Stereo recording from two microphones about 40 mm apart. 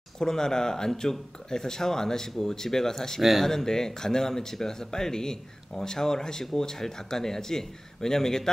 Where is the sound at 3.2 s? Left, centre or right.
Centre.